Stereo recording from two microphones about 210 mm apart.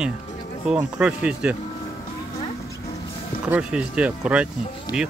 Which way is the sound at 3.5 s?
5° right (ahead or behind).